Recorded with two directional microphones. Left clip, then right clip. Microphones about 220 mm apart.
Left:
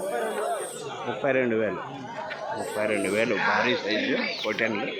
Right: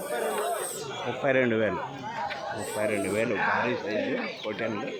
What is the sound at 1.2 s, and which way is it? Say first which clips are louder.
Speech: even; 5° right (ahead or behind).